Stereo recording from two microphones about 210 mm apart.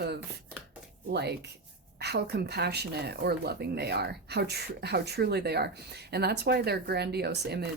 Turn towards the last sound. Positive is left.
turn(degrees=-50)  # may be behind; listen again after turning